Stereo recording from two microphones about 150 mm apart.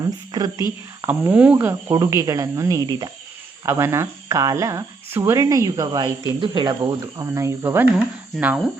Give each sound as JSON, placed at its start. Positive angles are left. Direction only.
{"t": 0.3, "sound": "speech", "side_deg": -25}
{"t": 1.0, "sound": "speech", "side_deg": -10}
{"t": 1.5, "sound": "speech", "side_deg": -25}
{"t": 3.7, "sound": "speech", "side_deg": -15}